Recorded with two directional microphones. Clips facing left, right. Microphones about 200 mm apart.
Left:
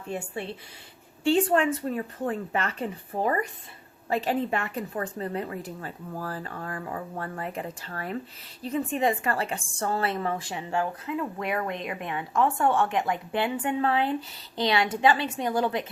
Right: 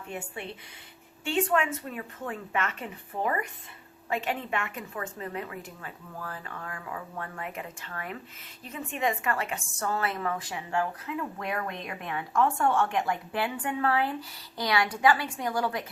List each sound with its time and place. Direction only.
1.2 s a woman's voice: 35° left (ahead or behind)